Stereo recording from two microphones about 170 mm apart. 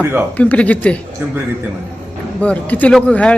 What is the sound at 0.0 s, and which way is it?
Speech, 15° right (ahead or behind).